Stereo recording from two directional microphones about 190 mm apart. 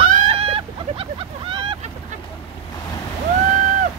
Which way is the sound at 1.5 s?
25° right (ahead or behind).